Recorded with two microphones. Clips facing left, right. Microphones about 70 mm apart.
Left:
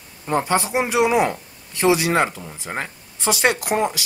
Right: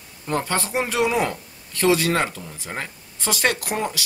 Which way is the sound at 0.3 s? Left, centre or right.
Centre.